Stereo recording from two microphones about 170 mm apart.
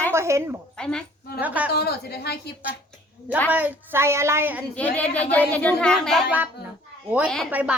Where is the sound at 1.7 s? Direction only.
70° left (ahead or behind).